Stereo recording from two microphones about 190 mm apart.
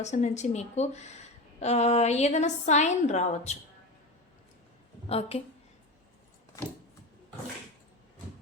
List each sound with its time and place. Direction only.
0.0 s a woman's voice: 35° left (ahead or behind)
5.0 s a woman's voice: 30° left (ahead or behind)